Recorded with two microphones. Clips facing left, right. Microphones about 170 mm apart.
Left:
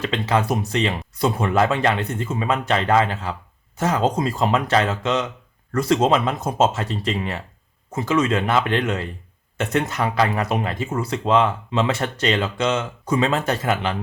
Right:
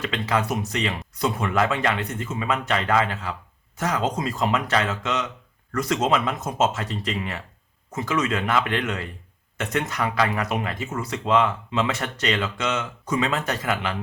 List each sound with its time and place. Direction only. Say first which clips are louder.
0.0 s speech: left 3 dB; 30° left (ahead or behind)